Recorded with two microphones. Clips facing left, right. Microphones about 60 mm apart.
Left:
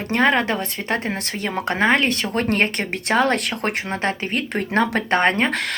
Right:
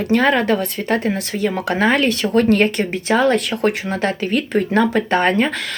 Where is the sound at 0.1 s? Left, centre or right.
Left.